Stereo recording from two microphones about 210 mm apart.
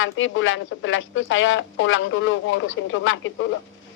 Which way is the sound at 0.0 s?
65° left (ahead or behind).